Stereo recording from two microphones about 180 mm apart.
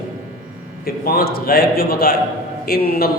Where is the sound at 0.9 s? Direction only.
55° left (ahead or behind).